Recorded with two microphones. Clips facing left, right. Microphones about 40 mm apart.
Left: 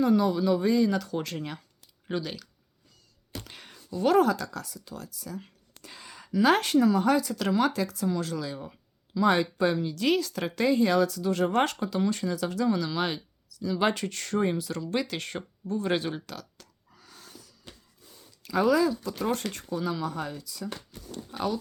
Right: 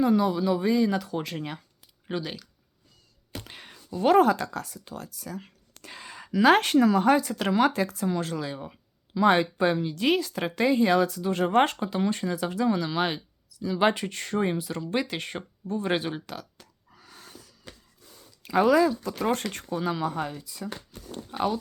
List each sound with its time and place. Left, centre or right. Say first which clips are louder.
0.0 s speech: right 1 dB; centre
3.3 s a sound: right 1 dB; right
4.0 s speech: right 3 dB; right
5.4 s a sound: right 1 dB; right
6.4 s speech: right 3 dB; right
7.1 s speech: right 2 dB; right
18.4 s speech: right 3 dB; right
20.1 s speech: right 3 dB; right